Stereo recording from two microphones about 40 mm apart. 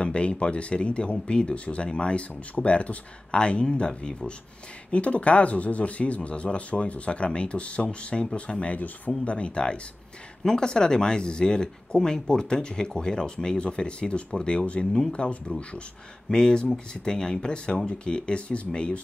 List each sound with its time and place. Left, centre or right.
0.0 s speech: left
8.6 s speech: left
9.2 s speech: left
14.9 s speech: centre
15.1 s speech: left
16.3 s speech: centre